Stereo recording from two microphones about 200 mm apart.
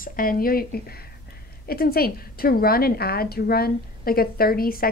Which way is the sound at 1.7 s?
50° left (ahead or behind).